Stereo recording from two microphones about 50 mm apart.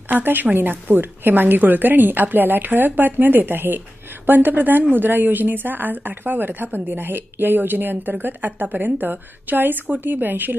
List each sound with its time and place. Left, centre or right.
0.1 s a woman's voice: right